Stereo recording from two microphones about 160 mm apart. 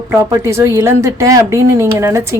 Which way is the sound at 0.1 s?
15° right (ahead or behind).